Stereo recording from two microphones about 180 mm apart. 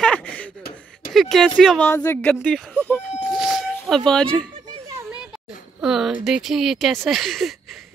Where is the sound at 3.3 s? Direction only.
5° right (ahead or behind).